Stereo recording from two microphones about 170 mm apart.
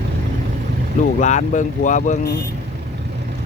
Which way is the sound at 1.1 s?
45° left (ahead or behind).